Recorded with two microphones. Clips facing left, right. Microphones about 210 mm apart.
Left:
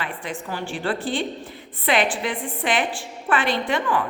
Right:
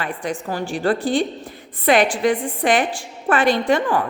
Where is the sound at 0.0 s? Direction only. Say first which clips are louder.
Right 5 dB; 45° right (ahead or behind).